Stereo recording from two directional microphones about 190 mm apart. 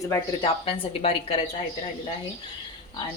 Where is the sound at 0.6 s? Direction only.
30° left (ahead or behind).